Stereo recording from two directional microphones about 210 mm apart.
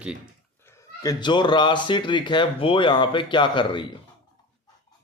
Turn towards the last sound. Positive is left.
turn(degrees=20)  # may be behind; listen again after turning